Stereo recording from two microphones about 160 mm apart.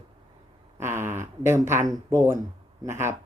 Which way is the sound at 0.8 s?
15° right (ahead or behind).